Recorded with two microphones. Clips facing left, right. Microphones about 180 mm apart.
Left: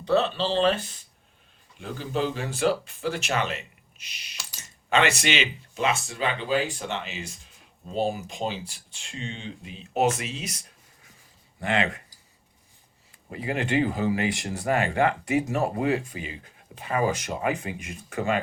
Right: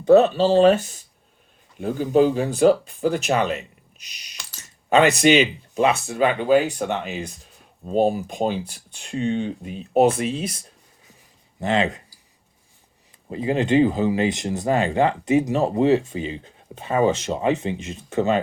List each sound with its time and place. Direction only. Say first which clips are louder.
0.0 s speech: right 9 dB; 45° right (ahead or behind)
10.2 s speech: right 10 dB; 50° right (ahead or behind)
11.6 s speech: right 5 dB; 25° right (ahead or behind)
13.3 s speech: right 7 dB; 25° right (ahead or behind)